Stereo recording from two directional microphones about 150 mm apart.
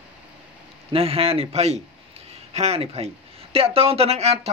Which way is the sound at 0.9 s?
40° right (ahead or behind).